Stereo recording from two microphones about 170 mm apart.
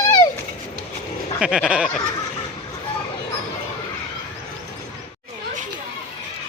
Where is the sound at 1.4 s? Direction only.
5° right (ahead or behind).